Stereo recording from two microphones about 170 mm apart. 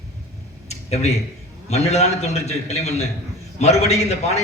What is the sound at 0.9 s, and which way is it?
A man's voice, 40° left (ahead or behind).